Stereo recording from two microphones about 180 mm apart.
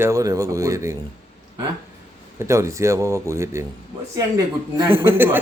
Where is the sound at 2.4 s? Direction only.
15° right (ahead or behind).